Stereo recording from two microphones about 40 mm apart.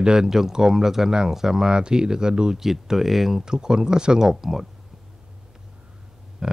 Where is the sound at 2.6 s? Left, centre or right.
Centre.